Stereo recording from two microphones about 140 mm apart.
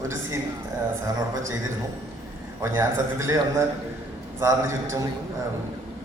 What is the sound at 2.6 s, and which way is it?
A man's voice, 20° right (ahead or behind).